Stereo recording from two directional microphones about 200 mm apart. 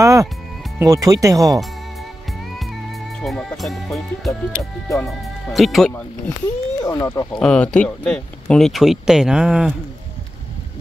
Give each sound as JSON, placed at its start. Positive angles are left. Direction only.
{"t": 0.0, "sound": "speech", "side_deg": -15}
{"t": 3.2, "sound": "speech", "side_deg": 0}
{"t": 4.3, "sound": "speech", "side_deg": 20}
{"t": 5.5, "sound": "speech", "side_deg": 0}
{"t": 6.8, "sound": "speech", "side_deg": 15}